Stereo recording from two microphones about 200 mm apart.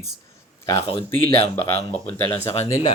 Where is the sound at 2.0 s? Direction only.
10° left (ahead or behind).